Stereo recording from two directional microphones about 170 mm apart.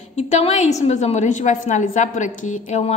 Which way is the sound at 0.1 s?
40° left (ahead or behind).